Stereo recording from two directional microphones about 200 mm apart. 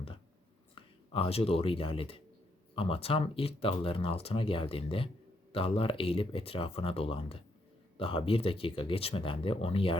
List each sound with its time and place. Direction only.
0.8 s speech: 25° left (ahead or behind)